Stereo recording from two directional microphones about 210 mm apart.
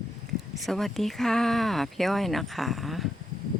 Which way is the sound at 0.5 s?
Centre (ahead or behind).